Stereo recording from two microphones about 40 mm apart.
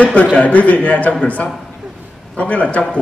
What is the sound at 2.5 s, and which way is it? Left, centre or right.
Speech, left.